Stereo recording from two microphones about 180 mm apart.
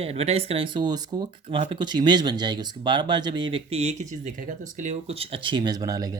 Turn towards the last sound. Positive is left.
turn(degrees=-20)  # may be behind; listen again after turning